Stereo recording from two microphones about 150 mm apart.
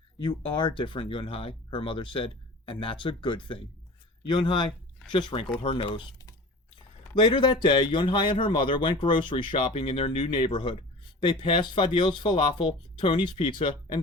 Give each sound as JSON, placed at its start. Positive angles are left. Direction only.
{"t": 0.2, "sound": "a man's voice", "side_deg": 30}